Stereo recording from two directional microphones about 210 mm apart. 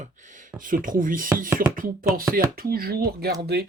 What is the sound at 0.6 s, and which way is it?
Speech, 40° right (ahead or behind).